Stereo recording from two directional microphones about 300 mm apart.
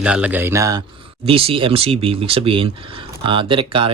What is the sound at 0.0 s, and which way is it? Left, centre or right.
Speech, centre.